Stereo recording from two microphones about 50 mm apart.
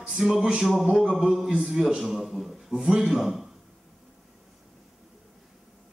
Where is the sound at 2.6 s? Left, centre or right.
Centre.